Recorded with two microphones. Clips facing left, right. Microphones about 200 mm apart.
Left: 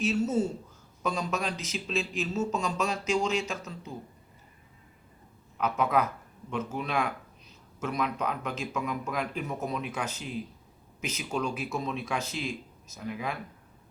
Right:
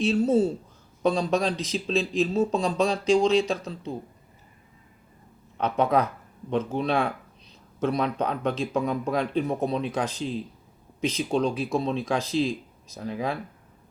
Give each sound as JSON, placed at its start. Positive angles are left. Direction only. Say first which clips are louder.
{"t": 0.0, "sound": "speech", "louder": "right 6 dB", "side_deg": -35}
{"t": 5.5, "sound": "speech", "louder": "right 4 dB", "side_deg": -30}